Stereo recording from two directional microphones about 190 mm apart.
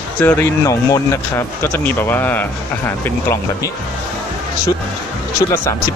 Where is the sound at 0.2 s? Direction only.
10° left (ahead or behind).